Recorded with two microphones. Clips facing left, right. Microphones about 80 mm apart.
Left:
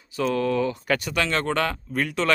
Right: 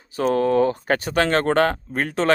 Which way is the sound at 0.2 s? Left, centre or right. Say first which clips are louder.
Right 5 dB; right.